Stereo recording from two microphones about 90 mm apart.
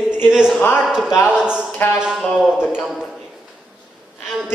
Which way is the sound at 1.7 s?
25° left (ahead or behind).